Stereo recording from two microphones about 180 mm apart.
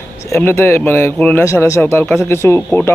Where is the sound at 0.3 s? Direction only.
15° left (ahead or behind).